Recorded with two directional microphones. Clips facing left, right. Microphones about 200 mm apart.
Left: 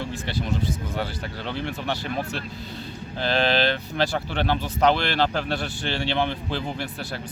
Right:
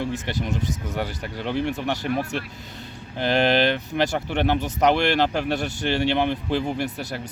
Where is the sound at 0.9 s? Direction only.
15° right (ahead or behind).